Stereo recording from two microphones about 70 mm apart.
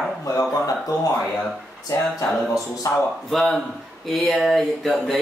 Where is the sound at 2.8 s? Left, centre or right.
Left.